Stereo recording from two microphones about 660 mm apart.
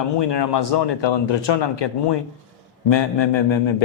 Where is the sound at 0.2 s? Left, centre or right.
Left.